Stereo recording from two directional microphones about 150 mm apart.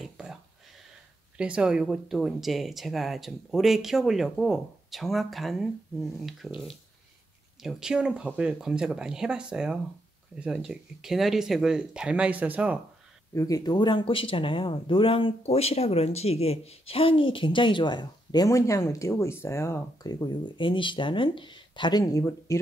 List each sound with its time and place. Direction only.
0.0 s a sound: 5° right (ahead or behind)
1.4 s speech: 5° right (ahead or behind)
7.6 s speech: 5° right (ahead or behind)
13.3 s speech: 20° left (ahead or behind)